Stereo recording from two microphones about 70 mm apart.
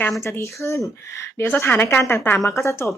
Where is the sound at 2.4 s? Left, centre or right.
Left.